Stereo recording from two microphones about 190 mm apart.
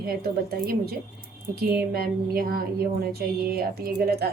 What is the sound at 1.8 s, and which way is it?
Speech, 55° right (ahead or behind).